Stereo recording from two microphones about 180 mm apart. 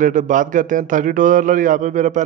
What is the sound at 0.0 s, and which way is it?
A man's voice, 45° right (ahead or behind).